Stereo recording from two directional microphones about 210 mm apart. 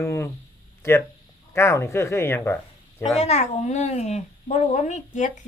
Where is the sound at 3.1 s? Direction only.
30° left (ahead or behind).